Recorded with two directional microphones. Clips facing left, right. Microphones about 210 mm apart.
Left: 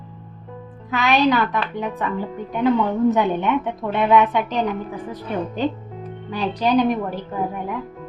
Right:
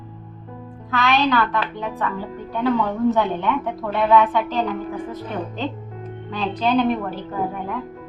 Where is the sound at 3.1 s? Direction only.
20° left (ahead or behind).